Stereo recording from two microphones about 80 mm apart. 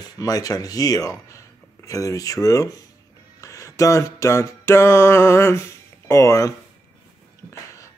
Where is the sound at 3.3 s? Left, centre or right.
Left.